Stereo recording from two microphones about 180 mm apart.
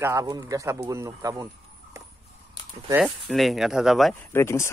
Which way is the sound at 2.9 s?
Centre (ahead or behind).